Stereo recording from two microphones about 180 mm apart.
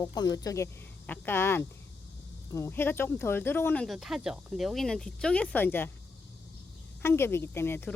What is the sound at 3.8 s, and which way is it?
Speech, centre (ahead or behind).